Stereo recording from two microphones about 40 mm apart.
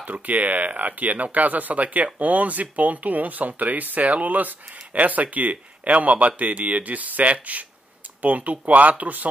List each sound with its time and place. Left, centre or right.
0.0 s speech: right